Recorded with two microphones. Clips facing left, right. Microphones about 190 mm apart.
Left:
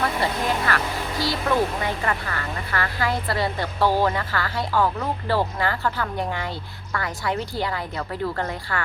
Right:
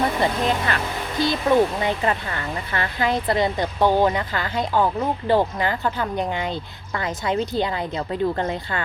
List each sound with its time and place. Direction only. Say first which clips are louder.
0.0 s speech: right 3 dB; 20° right (ahead or behind)